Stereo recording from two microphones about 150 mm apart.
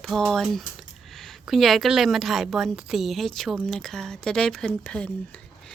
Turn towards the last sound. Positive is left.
turn(degrees=5)  # may be behind; listen again after turning